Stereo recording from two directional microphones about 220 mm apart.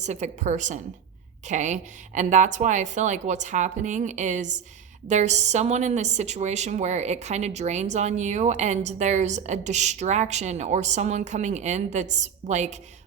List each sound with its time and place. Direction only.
0.0 s a woman's voice: 30° right (ahead or behind)